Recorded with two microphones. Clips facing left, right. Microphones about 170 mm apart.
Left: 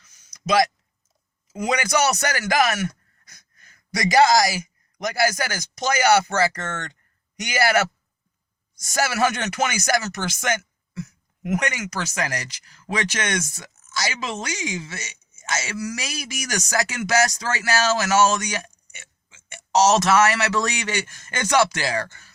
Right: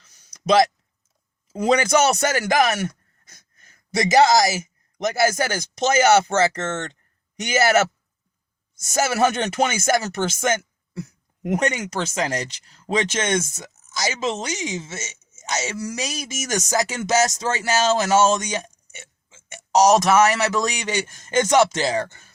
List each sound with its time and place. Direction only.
0.1 s a sound: 35° right (ahead or behind)
1.9 s speech: 25° right (ahead or behind)
8.9 s speech: 20° right (ahead or behind)
19.7 s speech: 15° right (ahead or behind)